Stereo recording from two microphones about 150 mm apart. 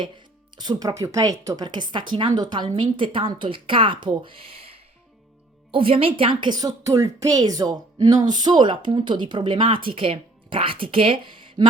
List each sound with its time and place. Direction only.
0.5 s a woman's voice: 25° right (ahead or behind)